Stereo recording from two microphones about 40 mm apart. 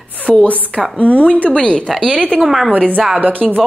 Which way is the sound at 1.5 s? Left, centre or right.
Left.